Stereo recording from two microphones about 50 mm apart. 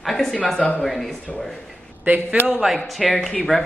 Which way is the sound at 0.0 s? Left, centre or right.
Centre.